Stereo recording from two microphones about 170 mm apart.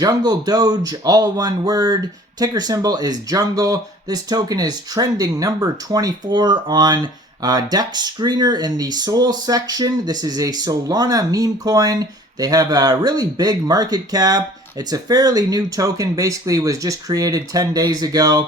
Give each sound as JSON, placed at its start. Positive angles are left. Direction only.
{"t": 0.0, "sound": "speech", "side_deg": -25}